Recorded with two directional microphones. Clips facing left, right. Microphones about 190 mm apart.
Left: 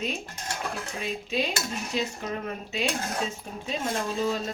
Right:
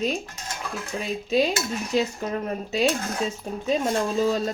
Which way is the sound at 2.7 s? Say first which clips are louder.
Right 6 dB; 40° right (ahead or behind).